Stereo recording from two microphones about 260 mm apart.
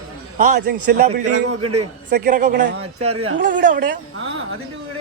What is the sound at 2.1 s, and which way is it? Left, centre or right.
Speech, right.